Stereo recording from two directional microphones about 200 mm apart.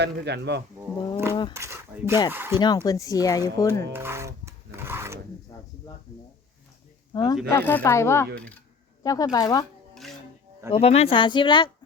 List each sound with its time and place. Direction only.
0.0 s speech: 55° right (ahead or behind)
1.1 s a sound: 10° right (ahead or behind)
1.5 s speech: 15° right (ahead or behind)
2.6 s speech: 20° left (ahead or behind)
3.9 s music: 10° right (ahead or behind)
5.5 s a sound: 15° left (ahead or behind)
7.1 s speech: 20° left (ahead or behind)
7.5 s speech: 10° left (ahead or behind)
9.0 s speech: 20° left (ahead or behind)
10.7 s speech: 30° left (ahead or behind)